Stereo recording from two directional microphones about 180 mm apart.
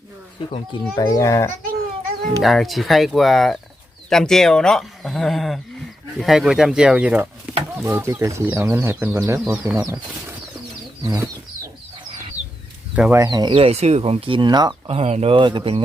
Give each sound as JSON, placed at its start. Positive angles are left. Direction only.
{"t": 0.9, "sound": "speech", "side_deg": 15}
{"t": 2.4, "sound": "speech", "side_deg": 0}
{"t": 9.4, "sound": "speech", "side_deg": -5}
{"t": 9.7, "sound": "speech", "side_deg": -15}
{"t": 13.0, "sound": "speech", "side_deg": -15}